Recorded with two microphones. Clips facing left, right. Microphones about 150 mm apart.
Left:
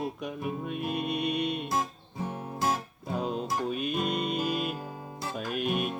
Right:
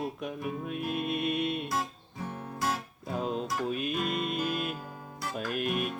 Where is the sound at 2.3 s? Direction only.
25° left (ahead or behind).